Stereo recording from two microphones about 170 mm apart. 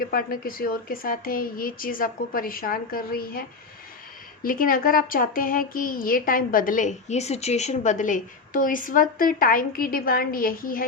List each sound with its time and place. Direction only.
0.0 s a woman's voice: 60° left (ahead or behind)
4.4 s a woman's voice: 55° left (ahead or behind)